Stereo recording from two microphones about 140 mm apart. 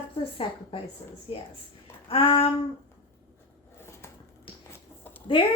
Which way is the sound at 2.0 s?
40° left (ahead or behind).